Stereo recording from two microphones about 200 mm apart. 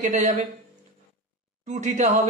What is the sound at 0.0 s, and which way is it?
Speech, 35° right (ahead or behind).